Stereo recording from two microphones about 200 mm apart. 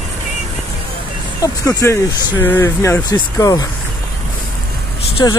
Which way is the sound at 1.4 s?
15° left (ahead or behind).